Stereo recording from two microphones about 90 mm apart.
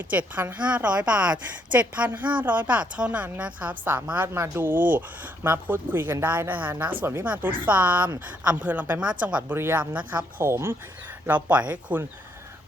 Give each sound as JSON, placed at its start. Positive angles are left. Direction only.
{"t": 0.1, "sound": "a woman's voice", "side_deg": -20}
{"t": 11.4, "sound": "a woman's voice", "side_deg": -15}